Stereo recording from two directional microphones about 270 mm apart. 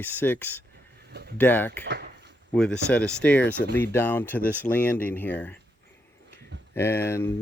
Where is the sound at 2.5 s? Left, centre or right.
Centre.